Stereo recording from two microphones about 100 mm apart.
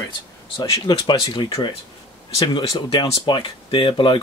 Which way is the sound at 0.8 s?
50° left (ahead or behind).